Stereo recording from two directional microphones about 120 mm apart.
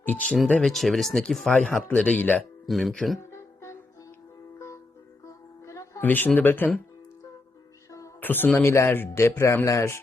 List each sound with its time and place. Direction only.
0.0 s speech: 10° left (ahead or behind)
2.6 s speech: centre (ahead or behind)
3.2 s music: 25° left (ahead or behind)
5.2 s music: 25° left (ahead or behind)
6.0 s speech: 15° left (ahead or behind)
8.2 s speech: 15° left (ahead or behind)